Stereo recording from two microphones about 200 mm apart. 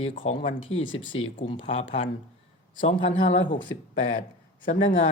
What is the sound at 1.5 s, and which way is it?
Speech, 25° left (ahead or behind).